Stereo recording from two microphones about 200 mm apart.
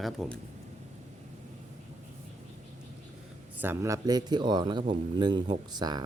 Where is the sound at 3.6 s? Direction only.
10° right (ahead or behind).